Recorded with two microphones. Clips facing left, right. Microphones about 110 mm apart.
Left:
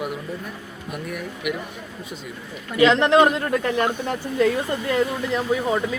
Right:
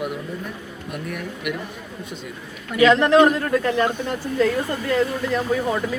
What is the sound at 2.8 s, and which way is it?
Speech, 20° left (ahead or behind).